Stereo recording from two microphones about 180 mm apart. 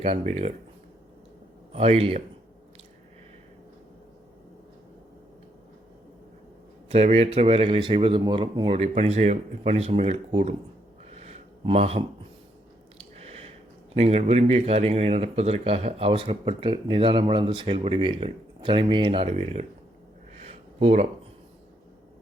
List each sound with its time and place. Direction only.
0.0 s a man's voice: 35° right (ahead or behind)
1.7 s a man's voice: 35° right (ahead or behind)
6.9 s a man's voice: 35° right (ahead or behind)
11.1 s a sound: 35° right (ahead or behind)
13.0 s squish: 35° right (ahead or behind)
13.9 s a man's voice: 35° right (ahead or behind)
20.4 s a sound: 35° right (ahead or behind)